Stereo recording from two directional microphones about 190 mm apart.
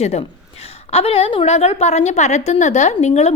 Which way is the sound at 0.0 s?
35° left (ahead or behind).